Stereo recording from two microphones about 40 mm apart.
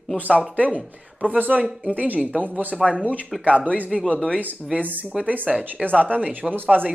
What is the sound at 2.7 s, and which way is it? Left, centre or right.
Speech, centre.